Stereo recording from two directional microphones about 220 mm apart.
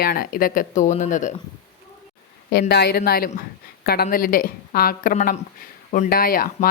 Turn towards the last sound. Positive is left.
turn(degrees=40)  # may be behind; listen again after turning